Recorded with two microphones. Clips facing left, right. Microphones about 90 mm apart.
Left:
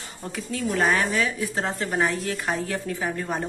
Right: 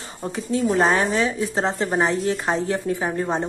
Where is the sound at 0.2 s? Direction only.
30° right (ahead or behind).